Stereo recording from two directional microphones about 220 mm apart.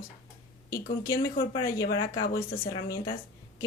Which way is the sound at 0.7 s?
15° left (ahead or behind).